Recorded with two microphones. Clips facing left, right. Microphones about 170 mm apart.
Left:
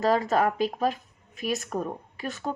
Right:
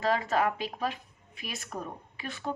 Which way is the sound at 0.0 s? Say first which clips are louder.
Left 4 dB; 40° left (ahead or behind).